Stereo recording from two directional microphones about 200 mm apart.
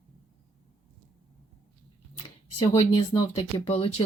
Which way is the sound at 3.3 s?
30° left (ahead or behind).